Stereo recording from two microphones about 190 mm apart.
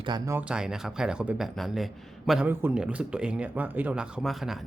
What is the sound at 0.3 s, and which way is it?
Speech, 5° right (ahead or behind).